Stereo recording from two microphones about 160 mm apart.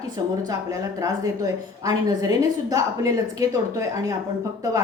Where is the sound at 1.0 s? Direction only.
20° right (ahead or behind).